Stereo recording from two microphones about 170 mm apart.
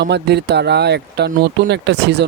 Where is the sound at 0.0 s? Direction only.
85° right.